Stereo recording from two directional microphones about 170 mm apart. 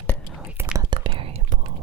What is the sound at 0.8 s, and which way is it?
Whispering, 30° right (ahead or behind).